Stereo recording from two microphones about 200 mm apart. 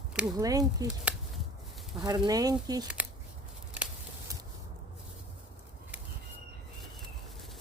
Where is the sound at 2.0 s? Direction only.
20° right (ahead or behind).